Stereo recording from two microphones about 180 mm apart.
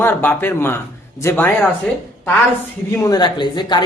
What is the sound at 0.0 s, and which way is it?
Speech, 10° left (ahead or behind).